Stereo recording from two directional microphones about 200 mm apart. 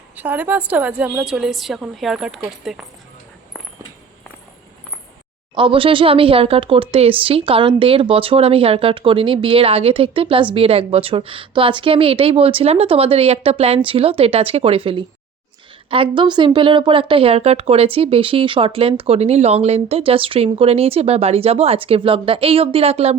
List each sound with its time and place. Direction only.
0.2 s a woman's voice: 10° right (ahead or behind)
5.5 s speech: 25° right (ahead or behind)